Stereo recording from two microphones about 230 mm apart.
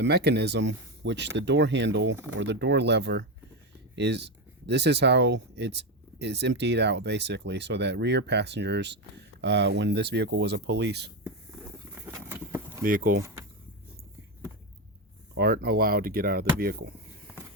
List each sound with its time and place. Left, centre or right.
0.0 s speech: right
12.1 s a sound: centre
12.8 s speech: right
15.4 s speech: right